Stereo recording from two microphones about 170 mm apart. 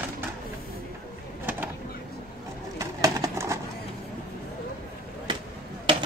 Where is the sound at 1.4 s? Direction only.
10° right (ahead or behind).